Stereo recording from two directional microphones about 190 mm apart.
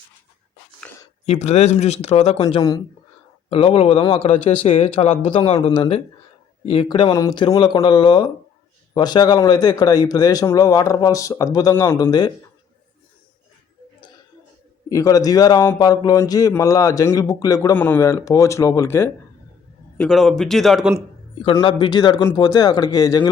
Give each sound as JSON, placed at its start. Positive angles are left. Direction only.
{"t": 1.2, "sound": "a man's voice", "side_deg": 35}
{"t": 2.6, "sound": "a man's voice", "side_deg": 20}
{"t": 3.5, "sound": "a man's voice", "side_deg": 30}
{"t": 14.8, "sound": "a man's voice", "side_deg": 20}
{"t": 20.0, "sound": "speech", "side_deg": 0}
{"t": 21.4, "sound": "a man's voice", "side_deg": 25}